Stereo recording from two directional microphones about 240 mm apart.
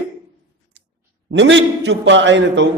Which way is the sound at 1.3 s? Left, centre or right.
Right.